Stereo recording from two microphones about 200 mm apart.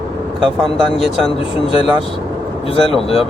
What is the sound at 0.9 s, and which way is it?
Speech, 30° left (ahead or behind).